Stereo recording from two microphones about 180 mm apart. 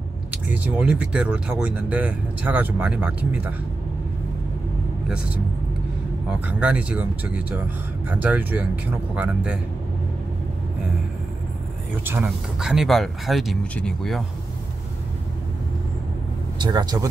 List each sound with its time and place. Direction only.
0.5 s speech: 5° right (ahead or behind)
6.4 s speech: 5° right (ahead or behind)
12.0 s speech: 10° right (ahead or behind)
16.5 s speech: 25° right (ahead or behind)